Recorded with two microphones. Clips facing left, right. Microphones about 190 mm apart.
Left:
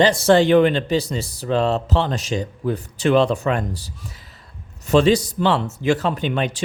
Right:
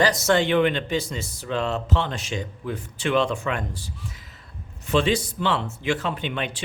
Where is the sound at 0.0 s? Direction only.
30° left (ahead or behind).